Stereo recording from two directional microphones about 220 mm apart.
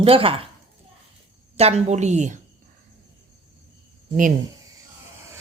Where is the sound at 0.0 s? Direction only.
25° right (ahead or behind).